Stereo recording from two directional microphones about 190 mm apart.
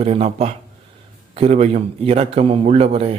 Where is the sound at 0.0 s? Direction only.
35° right (ahead or behind).